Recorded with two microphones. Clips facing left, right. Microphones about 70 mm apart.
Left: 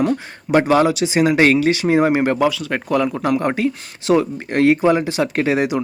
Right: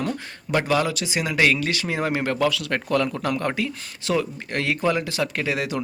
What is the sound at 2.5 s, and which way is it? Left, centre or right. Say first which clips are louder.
Speech: left 3 dB; centre.